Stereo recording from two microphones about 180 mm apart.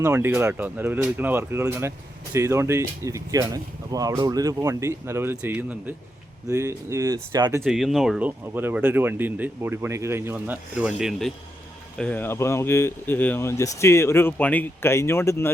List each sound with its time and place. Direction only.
0.0 s speech: 15° right (ahead or behind)
7.6 s speech: centre (ahead or behind)
11.9 s speech: 10° left (ahead or behind)